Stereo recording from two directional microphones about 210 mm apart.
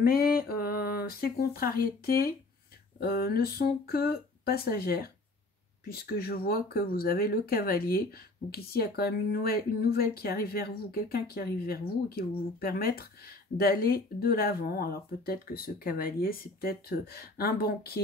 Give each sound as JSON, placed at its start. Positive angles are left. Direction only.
{"t": 0.0, "sound": "speech", "side_deg": 45}